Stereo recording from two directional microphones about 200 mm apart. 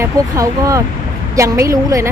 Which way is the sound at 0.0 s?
15° right (ahead or behind).